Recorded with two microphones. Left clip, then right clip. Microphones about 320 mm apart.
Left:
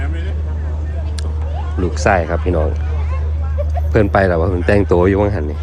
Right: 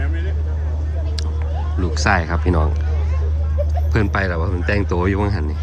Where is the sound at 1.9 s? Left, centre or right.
Centre.